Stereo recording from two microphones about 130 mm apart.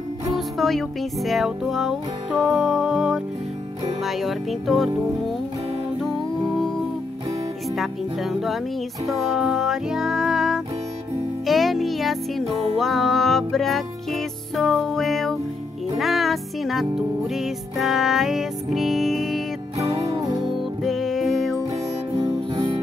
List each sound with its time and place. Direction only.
0.6 s music: centre (ahead or behind)
6.0 s music: centre (ahead or behind)
7.7 s music: centre (ahead or behind)
20.8 s music: centre (ahead or behind)
22.1 s music: 35° right (ahead or behind)